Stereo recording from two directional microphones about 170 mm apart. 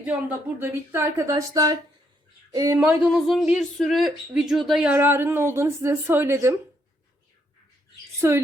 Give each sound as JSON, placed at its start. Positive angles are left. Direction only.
{"t": 0.0, "sound": "speech", "side_deg": -10}
{"t": 2.8, "sound": "speech", "side_deg": -5}
{"t": 8.2, "sound": "speech", "side_deg": -15}